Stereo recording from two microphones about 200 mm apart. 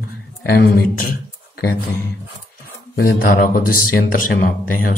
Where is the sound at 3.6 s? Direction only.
45° left (ahead or behind).